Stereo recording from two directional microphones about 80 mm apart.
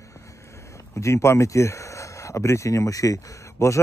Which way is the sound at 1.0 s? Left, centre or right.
Left.